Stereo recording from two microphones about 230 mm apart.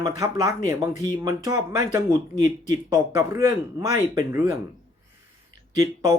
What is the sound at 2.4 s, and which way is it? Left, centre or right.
Speech, left.